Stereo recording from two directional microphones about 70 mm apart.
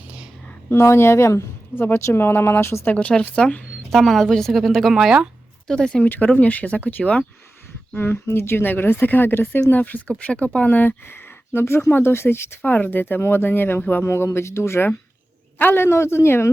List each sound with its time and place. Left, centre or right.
0.7 s speech: left
2.8 s a woman's voice: centre
5.6 s speech: centre
6.1 s speech: left
7.9 s speech: left